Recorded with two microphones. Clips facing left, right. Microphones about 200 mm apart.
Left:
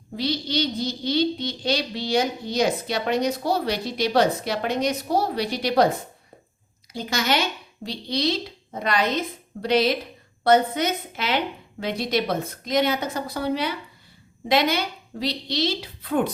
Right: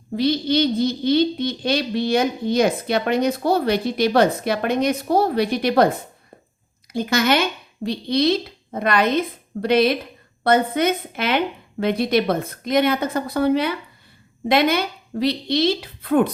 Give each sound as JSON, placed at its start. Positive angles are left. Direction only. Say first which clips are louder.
{"t": 0.2, "sound": "speech", "louder": "right 7 dB", "side_deg": -55}
{"t": 6.9, "sound": "a woman's voice", "louder": "right 6 dB", "side_deg": -55}